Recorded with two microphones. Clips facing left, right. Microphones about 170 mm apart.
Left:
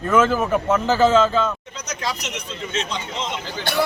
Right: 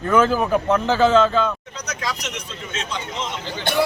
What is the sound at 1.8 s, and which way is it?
Speech, 25° left (ahead or behind).